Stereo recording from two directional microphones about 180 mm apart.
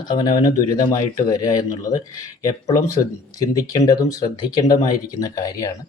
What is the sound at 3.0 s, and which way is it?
A man's voice, 20° left (ahead or behind).